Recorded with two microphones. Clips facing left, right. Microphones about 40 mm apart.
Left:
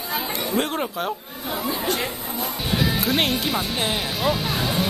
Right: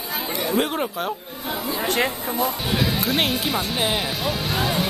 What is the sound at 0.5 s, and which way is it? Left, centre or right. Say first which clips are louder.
Speech: right 1 dB; centre.